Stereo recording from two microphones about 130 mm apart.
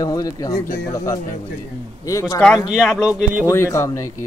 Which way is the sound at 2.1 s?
25° left (ahead or behind).